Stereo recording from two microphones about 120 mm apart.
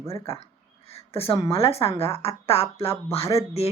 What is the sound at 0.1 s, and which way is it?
A woman's voice, 55° left (ahead or behind).